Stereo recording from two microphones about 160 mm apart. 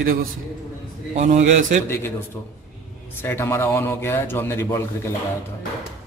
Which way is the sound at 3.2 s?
15° left (ahead or behind).